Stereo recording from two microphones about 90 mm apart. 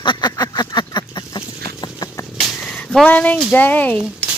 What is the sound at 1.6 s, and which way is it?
Boat, 45° left (ahead or behind).